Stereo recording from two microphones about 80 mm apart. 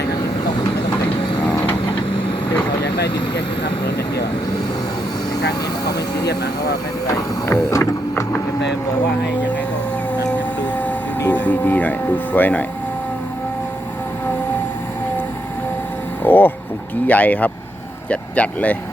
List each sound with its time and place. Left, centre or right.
2.0 s vehicle: left
7.1 s printer: left
11.2 s a sound: left
16.2 s music: left
17.1 s speech: centre